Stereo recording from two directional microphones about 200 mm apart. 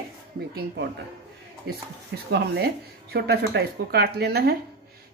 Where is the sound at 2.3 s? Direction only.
55° right (ahead or behind).